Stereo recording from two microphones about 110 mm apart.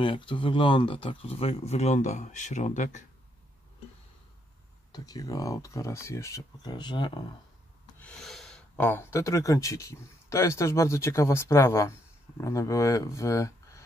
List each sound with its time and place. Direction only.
0.0 s speech: 50° left (ahead or behind); by 3.0 s 90° left
4.9 s speech: 35° left (ahead or behind)
6.7 s speech: 45° left (ahead or behind)
8.2 s gasp: centre (ahead or behind)
8.7 s speech: 20° left (ahead or behind)